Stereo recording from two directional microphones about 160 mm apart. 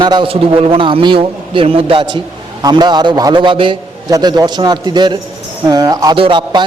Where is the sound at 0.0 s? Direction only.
30° right (ahead or behind).